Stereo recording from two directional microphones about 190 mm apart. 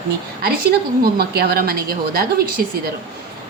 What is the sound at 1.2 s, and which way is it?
A woman's voice, 55° right (ahead or behind).